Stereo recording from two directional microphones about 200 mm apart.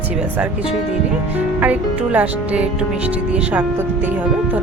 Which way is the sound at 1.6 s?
5° right (ahead or behind).